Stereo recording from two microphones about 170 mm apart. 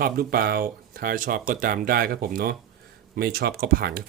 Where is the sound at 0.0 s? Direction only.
60° right (ahead or behind).